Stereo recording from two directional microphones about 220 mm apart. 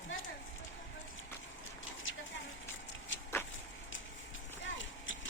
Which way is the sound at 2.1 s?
65° left (ahead or behind).